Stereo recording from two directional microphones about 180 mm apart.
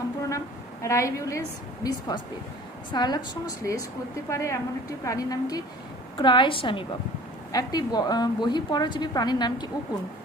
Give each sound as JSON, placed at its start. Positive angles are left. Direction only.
{"t": 0.2, "sound": "a woman's voice", "side_deg": 15}